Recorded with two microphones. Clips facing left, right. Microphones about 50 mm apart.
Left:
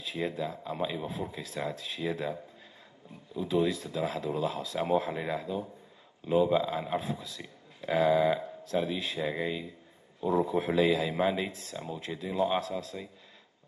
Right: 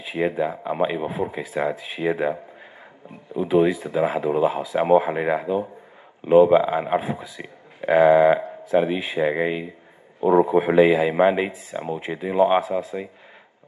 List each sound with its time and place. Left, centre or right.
0.1 s speech: right